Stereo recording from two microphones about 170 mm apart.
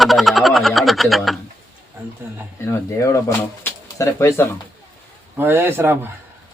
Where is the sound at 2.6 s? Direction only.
20° left (ahead or behind).